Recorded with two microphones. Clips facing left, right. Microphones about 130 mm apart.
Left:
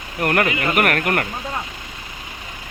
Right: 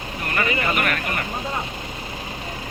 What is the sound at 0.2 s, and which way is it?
Speech, 70° left (ahead or behind).